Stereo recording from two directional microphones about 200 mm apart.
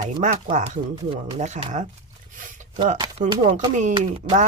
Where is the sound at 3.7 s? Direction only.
35° right (ahead or behind).